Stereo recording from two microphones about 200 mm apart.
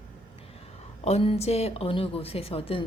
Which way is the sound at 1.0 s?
30° left (ahead or behind).